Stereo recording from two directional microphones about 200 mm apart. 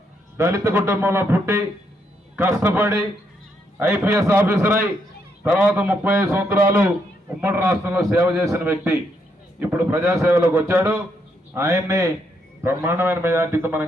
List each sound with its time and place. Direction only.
0.3 s a man's voice: 15° right (ahead or behind)